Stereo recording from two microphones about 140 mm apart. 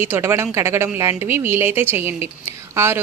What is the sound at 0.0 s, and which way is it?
A woman's voice, 15° right (ahead or behind).